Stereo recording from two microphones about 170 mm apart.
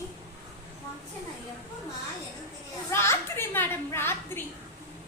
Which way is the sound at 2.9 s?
15° left (ahead or behind).